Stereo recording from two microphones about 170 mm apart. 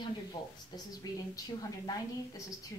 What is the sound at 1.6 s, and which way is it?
Speech, 20° left (ahead or behind).